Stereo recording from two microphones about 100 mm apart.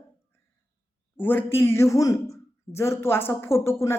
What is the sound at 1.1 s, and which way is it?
Speech, 20° left (ahead or behind).